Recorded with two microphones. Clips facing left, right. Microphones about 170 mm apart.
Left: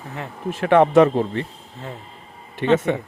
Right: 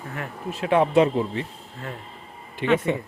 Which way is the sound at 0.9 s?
50° left (ahead or behind).